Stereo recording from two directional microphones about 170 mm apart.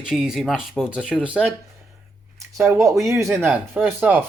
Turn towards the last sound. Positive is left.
turn(degrees=-10)  # may be behind; listen again after turning